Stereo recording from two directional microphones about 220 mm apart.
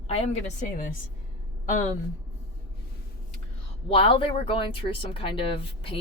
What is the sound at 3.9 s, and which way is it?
Speech, 25° left (ahead or behind).